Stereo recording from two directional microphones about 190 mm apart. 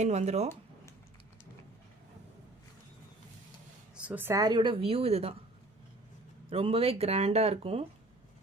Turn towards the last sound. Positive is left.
turn(degrees=-30)  # may be behind; listen again after turning